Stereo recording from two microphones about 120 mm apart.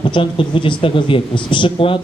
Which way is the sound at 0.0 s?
45° left (ahead or behind).